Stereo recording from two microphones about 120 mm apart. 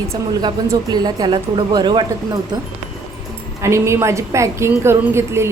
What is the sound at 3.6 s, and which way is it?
A woman's voice, 25° right (ahead or behind).